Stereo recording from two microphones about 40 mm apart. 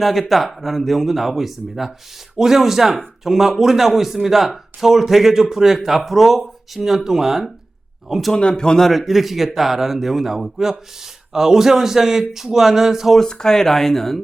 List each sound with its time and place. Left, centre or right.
0.0 s a man's voice: centre
8.4 s speech: left
8.9 s a man's voice: centre
13.1 s speech: centre